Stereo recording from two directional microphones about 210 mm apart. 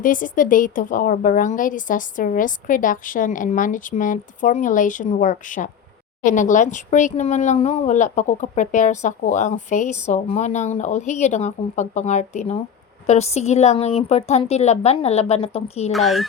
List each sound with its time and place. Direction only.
0.0 s speech: 40° left (ahead or behind)
15.9 s speech: centre (ahead or behind)